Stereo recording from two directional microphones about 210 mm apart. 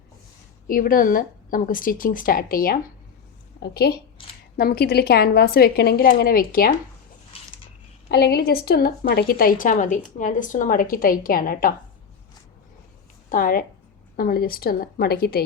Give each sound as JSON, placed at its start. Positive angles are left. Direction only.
{"t": 0.7, "sound": "a woman's voice", "side_deg": 40}
{"t": 8.1, "sound": "a woman's voice", "side_deg": 50}
{"t": 13.3, "sound": "a woman's voice", "side_deg": 40}